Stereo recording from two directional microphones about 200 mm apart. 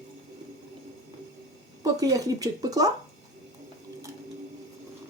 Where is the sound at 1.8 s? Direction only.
20° right (ahead or behind).